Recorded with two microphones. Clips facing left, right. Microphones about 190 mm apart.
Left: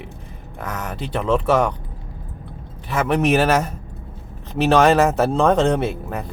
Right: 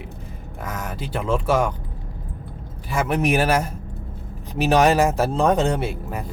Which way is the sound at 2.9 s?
5° right (ahead or behind).